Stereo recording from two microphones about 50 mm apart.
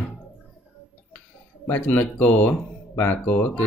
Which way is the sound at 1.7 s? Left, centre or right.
Left.